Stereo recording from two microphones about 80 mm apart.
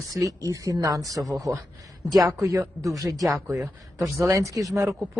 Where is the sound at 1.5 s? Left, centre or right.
Right.